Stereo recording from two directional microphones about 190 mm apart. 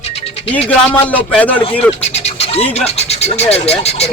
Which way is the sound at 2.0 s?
35° left (ahead or behind).